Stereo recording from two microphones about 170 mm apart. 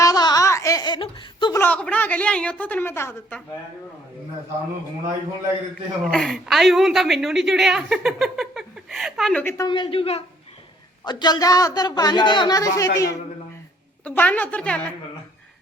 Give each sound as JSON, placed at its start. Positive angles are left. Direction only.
{"t": 0.0, "sound": "laughter", "side_deg": 20}
{"t": 1.5, "sound": "a woman's voice", "side_deg": 10}
{"t": 6.1, "sound": "a woman's voice", "side_deg": 0}
{"t": 9.4, "sound": "a woman's voice", "side_deg": 15}
{"t": 9.6, "sound": "a man's voice", "side_deg": 30}
{"t": 14.0, "sound": "a woman's voice", "side_deg": 10}